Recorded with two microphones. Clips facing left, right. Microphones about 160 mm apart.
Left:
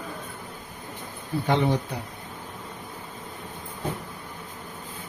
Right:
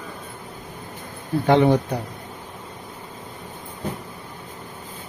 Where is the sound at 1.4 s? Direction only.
65° right (ahead or behind).